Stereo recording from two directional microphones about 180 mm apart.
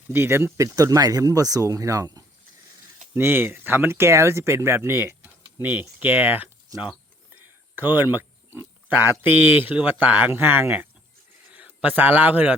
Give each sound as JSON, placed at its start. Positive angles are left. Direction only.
{"t": 0.1, "sound": "a man's voice", "side_deg": -15}